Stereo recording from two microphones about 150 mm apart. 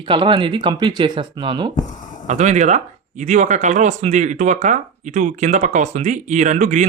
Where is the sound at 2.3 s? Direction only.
50° right (ahead or behind).